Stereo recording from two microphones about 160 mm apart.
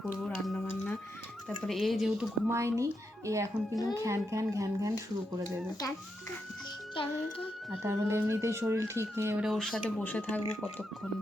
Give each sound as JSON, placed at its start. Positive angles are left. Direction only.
{"t": 0.0, "sound": "a sound", "side_deg": 5}
{"t": 1.5, "sound": "speech", "side_deg": 0}
{"t": 2.5, "sound": "a child's voice", "side_deg": -15}
{"t": 6.9, "sound": "speech", "side_deg": 35}
{"t": 7.8, "sound": "speech", "side_deg": -15}
{"t": 9.4, "sound": "speech", "side_deg": 0}